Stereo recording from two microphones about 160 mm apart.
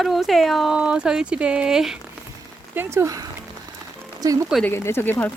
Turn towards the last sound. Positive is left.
turn(degrees=15)  # may be behind; listen again after turning